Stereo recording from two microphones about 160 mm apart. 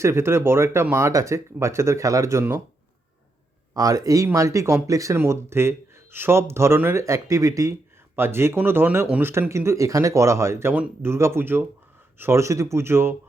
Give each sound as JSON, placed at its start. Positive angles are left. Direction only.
{"t": 0.0, "sound": "speech", "side_deg": -15}
{"t": 3.8, "sound": "speech", "side_deg": -20}